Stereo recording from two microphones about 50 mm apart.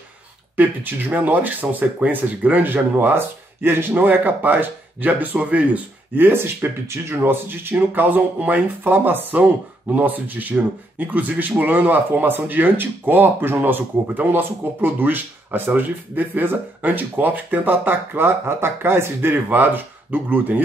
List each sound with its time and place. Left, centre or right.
0.6 s speech: right
6.1 s speech: right